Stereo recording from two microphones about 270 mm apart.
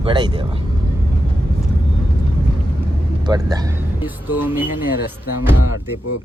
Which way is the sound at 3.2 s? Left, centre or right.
Centre.